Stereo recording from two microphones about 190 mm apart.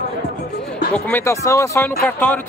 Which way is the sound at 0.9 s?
10° left (ahead or behind).